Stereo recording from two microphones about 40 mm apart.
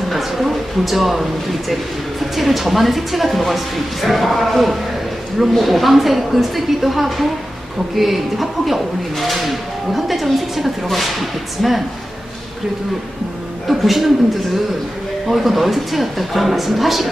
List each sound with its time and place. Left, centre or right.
0.1 s speech: centre
13.7 s a woman's voice: centre
15.2 s speech: centre